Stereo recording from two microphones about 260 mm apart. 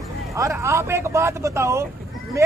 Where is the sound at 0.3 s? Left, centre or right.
Centre.